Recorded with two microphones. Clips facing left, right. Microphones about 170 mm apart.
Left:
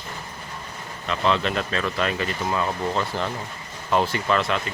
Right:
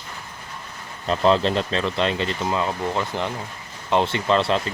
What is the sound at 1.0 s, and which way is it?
Speech, 35° right (ahead or behind).